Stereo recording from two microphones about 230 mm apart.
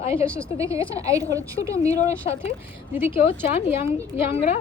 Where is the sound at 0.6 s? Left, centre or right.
Centre.